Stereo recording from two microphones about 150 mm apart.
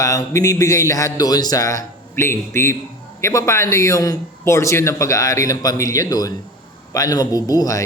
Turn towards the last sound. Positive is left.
turn(degrees=25)  # may be behind; listen again after turning